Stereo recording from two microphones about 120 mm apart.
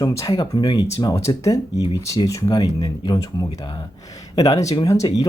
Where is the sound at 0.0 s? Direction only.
30° left (ahead or behind).